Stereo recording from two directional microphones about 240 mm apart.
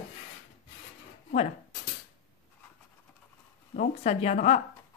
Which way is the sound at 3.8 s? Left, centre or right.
Left.